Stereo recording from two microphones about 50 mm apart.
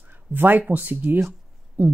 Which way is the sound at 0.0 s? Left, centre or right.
Right.